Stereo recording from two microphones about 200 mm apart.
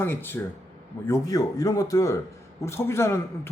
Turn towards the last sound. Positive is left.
turn(degrees=15)  # may be behind; listen again after turning